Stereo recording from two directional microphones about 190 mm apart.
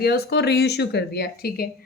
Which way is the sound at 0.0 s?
60° left (ahead or behind).